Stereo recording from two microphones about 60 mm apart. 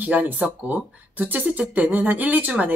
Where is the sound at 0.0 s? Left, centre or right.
Right.